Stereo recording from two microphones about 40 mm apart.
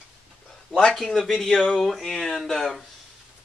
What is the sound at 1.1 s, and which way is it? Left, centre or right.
Speech, centre.